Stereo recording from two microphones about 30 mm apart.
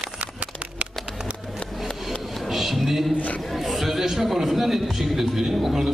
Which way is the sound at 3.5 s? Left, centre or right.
Centre.